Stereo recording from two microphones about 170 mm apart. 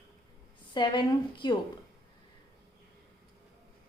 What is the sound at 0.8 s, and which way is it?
Speech, 30° left (ahead or behind).